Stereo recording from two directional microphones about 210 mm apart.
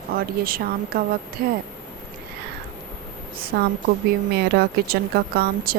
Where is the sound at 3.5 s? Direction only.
50° right (ahead or behind).